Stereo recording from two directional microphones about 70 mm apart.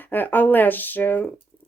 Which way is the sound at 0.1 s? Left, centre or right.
Left.